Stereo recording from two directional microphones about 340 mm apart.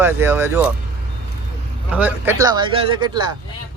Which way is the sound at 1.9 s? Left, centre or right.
Centre.